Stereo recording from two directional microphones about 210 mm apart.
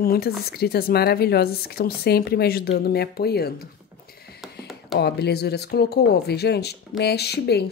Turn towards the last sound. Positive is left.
turn(degrees=50)  # may be behind; listen again after turning